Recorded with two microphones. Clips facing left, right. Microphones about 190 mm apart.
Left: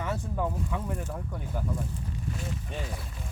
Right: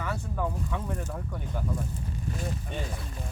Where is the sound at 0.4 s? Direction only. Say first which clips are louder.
Right 1 dB; 5° left (ahead or behind).